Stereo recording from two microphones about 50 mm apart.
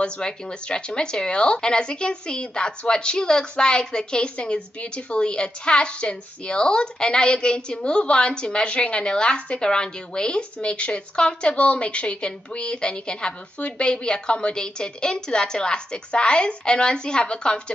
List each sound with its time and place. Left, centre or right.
0.0 s speech: centre